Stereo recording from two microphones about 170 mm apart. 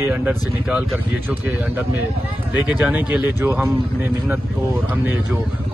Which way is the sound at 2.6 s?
5° right (ahead or behind).